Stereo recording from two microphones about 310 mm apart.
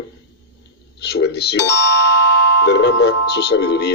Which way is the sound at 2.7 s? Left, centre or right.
Left.